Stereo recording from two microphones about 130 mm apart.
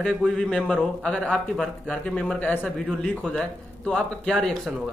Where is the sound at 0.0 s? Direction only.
5° left (ahead or behind).